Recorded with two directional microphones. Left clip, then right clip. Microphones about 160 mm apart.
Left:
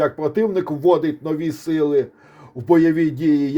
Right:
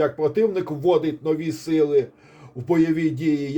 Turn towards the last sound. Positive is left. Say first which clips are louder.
# left 4 dB
turn(degrees=50)  # may be behind; listen again after turning